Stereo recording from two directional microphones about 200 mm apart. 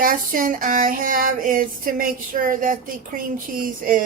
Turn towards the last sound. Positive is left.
turn(degrees=-45)  # may be behind; listen again after turning